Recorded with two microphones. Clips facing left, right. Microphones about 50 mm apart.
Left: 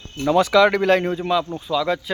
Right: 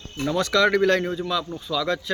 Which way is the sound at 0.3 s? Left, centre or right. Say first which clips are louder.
Left 4 dB; centre.